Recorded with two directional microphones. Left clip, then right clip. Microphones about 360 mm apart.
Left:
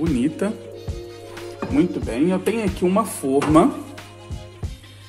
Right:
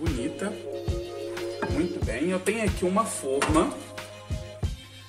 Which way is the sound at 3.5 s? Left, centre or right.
Centre.